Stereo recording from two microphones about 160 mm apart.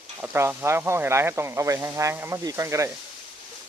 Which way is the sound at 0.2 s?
15° right (ahead or behind).